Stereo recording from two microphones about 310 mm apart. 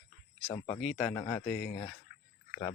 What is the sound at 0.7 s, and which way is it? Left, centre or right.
Speech, centre.